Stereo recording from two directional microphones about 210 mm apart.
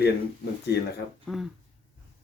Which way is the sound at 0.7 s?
50° left (ahead or behind).